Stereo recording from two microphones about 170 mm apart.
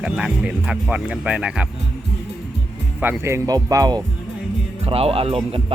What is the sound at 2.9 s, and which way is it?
Speech, 10° right (ahead or behind).